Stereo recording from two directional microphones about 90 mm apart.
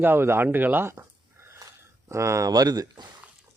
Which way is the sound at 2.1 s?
30° right (ahead or behind).